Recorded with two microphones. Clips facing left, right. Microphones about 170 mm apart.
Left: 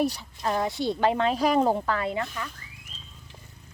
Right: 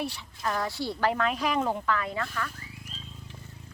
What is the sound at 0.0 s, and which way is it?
Speech, 40° left (ahead or behind).